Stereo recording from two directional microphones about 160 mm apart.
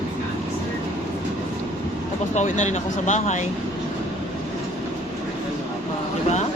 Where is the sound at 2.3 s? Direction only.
50° left (ahead or behind).